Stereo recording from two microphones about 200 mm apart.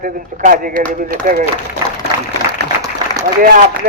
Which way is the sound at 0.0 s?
45° right (ahead or behind).